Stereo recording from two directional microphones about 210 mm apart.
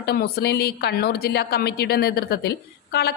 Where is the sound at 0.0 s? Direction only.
50° left (ahead or behind).